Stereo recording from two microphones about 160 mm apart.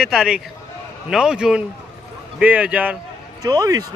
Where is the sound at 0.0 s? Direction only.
5° right (ahead or behind).